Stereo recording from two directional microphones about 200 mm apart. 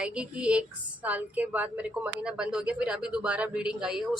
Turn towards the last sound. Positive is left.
turn(degrees=-5)  # may be behind; listen again after turning